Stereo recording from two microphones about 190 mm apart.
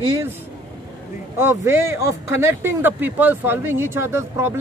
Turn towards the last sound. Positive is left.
turn(degrees=-15)  # may be behind; listen again after turning